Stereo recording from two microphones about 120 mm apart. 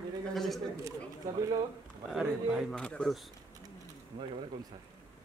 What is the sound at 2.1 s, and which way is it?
Speech, 5° right (ahead or behind).